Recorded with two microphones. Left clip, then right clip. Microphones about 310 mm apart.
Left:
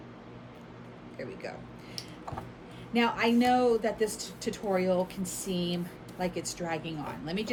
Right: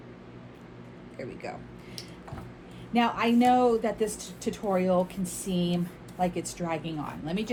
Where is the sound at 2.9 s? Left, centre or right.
Centre.